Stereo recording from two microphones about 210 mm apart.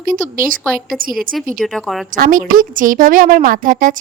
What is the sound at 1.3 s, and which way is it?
Speech, centre (ahead or behind).